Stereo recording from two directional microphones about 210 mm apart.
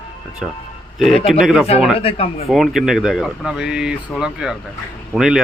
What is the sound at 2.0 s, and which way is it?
Speech, 30° left (ahead or behind).